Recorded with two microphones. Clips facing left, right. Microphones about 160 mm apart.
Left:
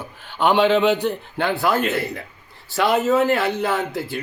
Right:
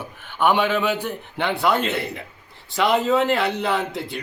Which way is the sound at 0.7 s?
20° left (ahead or behind).